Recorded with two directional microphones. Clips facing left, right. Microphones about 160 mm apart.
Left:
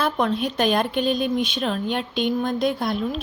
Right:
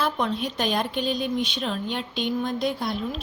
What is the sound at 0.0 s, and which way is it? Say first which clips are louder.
Speech: left 3 dB; 55° left (ahead or behind).